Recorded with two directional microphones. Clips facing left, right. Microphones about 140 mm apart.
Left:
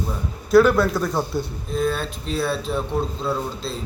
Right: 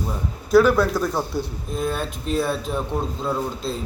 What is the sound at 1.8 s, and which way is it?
Speech, 15° right (ahead or behind).